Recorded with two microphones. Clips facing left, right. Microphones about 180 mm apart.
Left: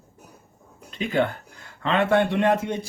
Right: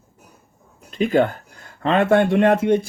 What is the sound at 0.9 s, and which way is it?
Speech, 45° right (ahead or behind).